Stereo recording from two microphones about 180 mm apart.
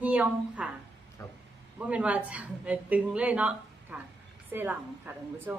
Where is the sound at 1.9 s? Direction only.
5° right (ahead or behind).